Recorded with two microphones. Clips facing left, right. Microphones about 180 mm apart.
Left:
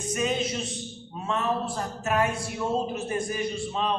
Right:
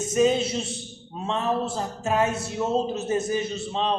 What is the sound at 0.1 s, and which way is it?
A man's voice, 30° right (ahead or behind).